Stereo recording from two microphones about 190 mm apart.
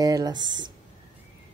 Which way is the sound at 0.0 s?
20° right (ahead or behind).